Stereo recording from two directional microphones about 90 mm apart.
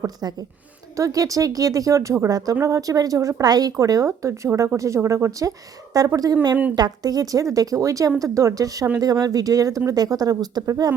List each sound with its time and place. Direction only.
0.0 s speech: 45° right (ahead or behind)